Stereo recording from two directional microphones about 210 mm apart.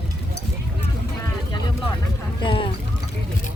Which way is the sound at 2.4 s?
25° left (ahead or behind).